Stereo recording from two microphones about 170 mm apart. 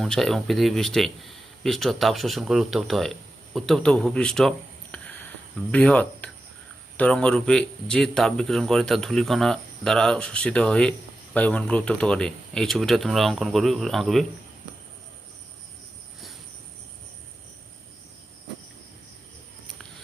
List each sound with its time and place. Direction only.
0.0 s a man's voice: centre (ahead or behind)